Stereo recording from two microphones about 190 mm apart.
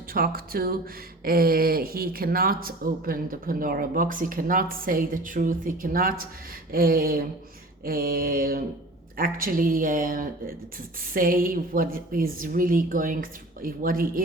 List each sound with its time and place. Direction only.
0.1 s speech: 50° right (ahead or behind)